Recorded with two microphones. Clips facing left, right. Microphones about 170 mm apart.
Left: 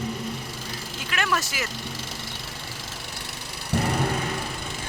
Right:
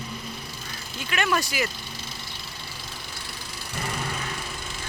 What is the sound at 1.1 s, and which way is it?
Speech, 5° right (ahead or behind).